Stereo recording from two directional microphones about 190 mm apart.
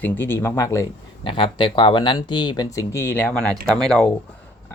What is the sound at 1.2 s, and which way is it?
Speech, 25° left (ahead or behind).